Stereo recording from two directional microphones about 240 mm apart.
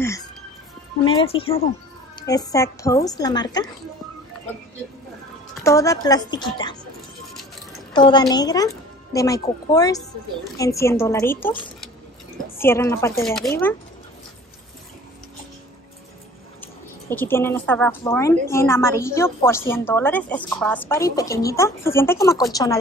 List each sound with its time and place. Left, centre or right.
0.0 s music: centre
1.2 s a woman's voice: left
5.6 s a woman's voice: centre
7.9 s a woman's voice: centre
12.5 s a woman's voice: centre
13.2 s speech: centre
16.6 s a woman's voice: centre